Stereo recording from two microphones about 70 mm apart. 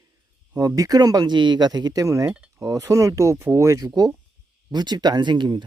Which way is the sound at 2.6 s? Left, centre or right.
Right.